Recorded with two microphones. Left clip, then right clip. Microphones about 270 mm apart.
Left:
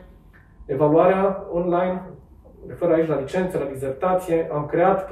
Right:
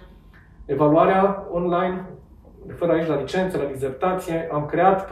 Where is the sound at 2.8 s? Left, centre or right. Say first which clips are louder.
Left 1 dB; centre.